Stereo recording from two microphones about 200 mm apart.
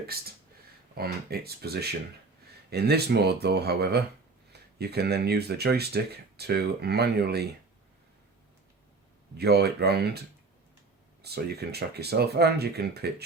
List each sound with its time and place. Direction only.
0.9 s speech: 50° right (ahead or behind)
9.4 s speech: 55° right (ahead or behind)